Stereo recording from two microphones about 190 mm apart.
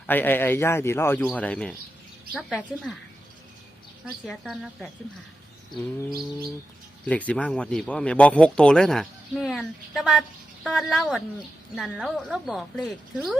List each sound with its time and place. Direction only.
0.1 s speech: 10° left (ahead or behind)
4.0 s speech: centre (ahead or behind)
6.1 s bird: 55° right (ahead or behind)
7.0 s speech: 10° left (ahead or behind)